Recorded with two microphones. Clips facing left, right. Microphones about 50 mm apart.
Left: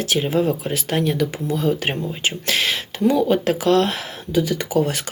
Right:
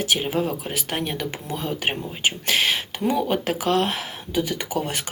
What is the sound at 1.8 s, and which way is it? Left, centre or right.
Speech, centre.